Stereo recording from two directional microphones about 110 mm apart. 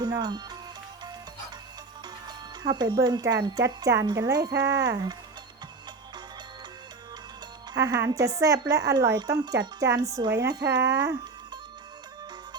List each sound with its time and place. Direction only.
0.0 s speech: 40° right (ahead or behind)
2.2 s speech: 40° right (ahead or behind)
7.7 s speech: 40° right (ahead or behind)
7.9 s speech: 30° right (ahead or behind)